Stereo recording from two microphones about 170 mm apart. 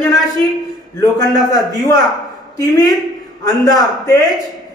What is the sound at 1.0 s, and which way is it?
A man's voice, 20° left (ahead or behind).